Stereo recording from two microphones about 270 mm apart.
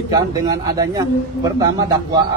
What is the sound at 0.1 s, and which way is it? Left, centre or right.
A man's voice, centre.